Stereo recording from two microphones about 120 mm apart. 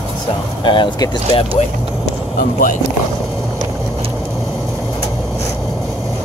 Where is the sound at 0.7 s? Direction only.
35° left (ahead or behind).